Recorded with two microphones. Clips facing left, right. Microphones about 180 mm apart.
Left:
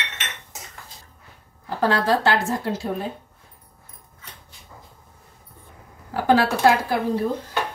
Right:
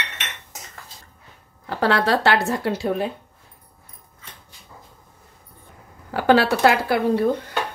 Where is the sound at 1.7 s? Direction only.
75° right (ahead or behind).